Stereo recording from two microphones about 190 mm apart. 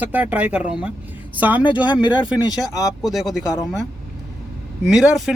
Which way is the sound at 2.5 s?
20° left (ahead or behind).